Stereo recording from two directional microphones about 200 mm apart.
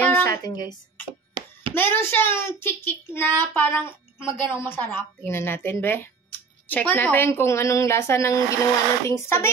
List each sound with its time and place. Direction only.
0.0 s speech: 10° left (ahead or behind)
1.4 s a sound: 25° right (ahead or behind)
1.7 s a woman's voice: 10° left (ahead or behind)